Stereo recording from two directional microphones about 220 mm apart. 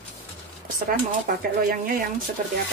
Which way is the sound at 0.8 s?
40° right (ahead or behind).